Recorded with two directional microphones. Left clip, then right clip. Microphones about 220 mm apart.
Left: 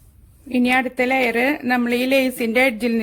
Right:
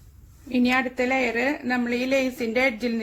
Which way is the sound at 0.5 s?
30° left (ahead or behind).